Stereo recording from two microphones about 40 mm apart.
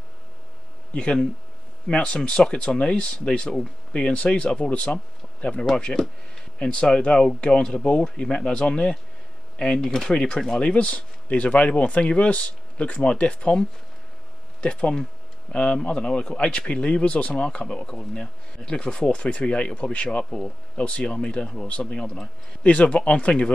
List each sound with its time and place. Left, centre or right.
0.9 s speech: left
4.0 s speech: left
9.8 s speech: centre
10.6 s speech: left
20.2 s speech: centre
20.7 s speech: left
21.9 s speech: centre
22.6 s speech: left